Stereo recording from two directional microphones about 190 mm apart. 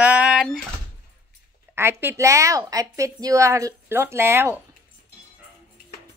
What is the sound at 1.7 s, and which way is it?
A woman's voice, 10° right (ahead or behind).